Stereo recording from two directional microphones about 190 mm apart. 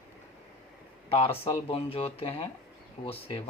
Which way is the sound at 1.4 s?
30° left (ahead or behind).